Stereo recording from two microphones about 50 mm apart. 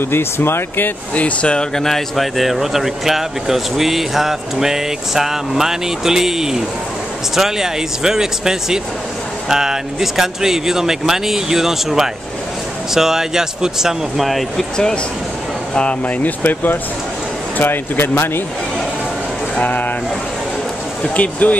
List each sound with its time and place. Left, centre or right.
0.1 s speech: left
1.1 s speech: left; by 14.7 s centre
15.7 s speech: left
16.2 s speech: left
19.6 s speech: left
21.0 s speech: left